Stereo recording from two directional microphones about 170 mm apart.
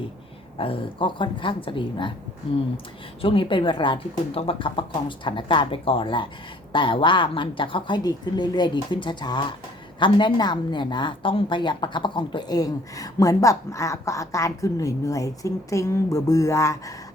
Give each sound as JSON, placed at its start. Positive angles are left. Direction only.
{"t": 0.6, "sound": "a woman's voice", "side_deg": 30}
{"t": 3.2, "sound": "a woman's voice", "side_deg": 30}